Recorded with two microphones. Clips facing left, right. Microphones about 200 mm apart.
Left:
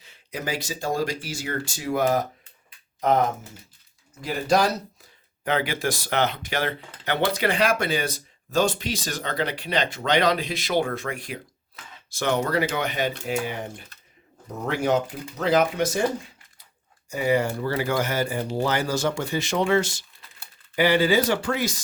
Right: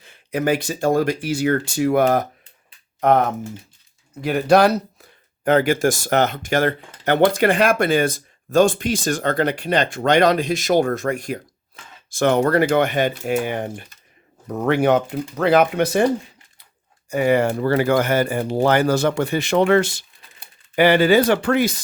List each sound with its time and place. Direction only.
0.0 s speech: 55° right (ahead or behind)
4.2 s speech: 65° right (ahead or behind)
5.5 s speech: 45° right (ahead or behind)
17.1 s speech: 65° right (ahead or behind)